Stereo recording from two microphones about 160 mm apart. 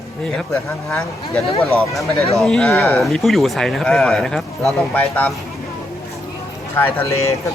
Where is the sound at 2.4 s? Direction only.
5° left (ahead or behind).